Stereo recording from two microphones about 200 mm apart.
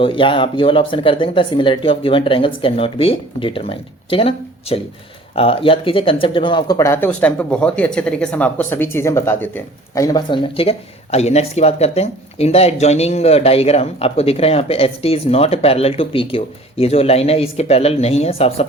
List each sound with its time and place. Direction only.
0.0 s speech: 25° left (ahead or behind)